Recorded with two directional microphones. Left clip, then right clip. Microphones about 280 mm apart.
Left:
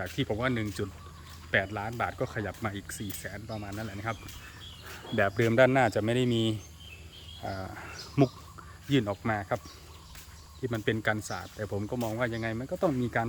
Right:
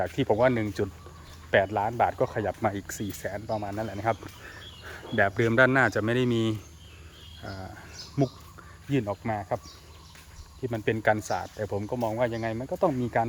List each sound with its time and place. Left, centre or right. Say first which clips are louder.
0.0 s speech: right 8 dB; centre
5.1 s speech: right 2 dB; centre
10.6 s speech: right 3 dB; centre